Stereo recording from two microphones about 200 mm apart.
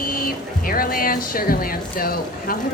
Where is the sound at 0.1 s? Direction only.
45° left (ahead or behind).